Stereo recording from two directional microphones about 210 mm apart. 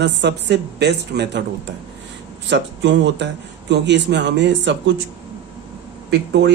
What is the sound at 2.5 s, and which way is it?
Speech, 55° right (ahead or behind).